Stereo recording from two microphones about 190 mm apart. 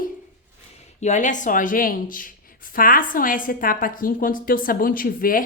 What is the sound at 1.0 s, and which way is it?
Speech, 40° left (ahead or behind).